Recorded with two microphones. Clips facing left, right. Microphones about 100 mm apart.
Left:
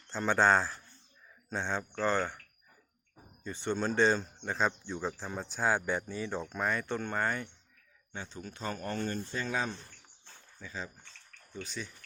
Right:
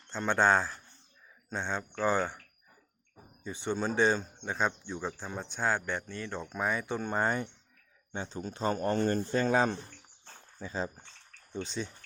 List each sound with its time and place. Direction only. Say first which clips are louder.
0.1 s speech: even; centre (ahead or behind)
3.4 s speech: even; 5° right (ahead or behind)
6.5 s speech: right 3 dB; 5° right (ahead or behind)
7.1 s speech: right 6 dB; 20° right (ahead or behind)
9.1 s speech: right 7 dB; 45° right (ahead or behind)
11.5 s speech: right 5 dB; 25° right (ahead or behind)